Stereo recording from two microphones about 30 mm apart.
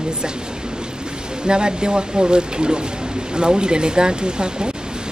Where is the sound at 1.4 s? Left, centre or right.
Right.